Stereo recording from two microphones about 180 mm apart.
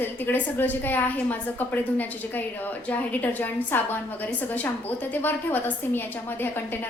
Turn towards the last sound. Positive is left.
turn(degrees=10)  # may be behind; listen again after turning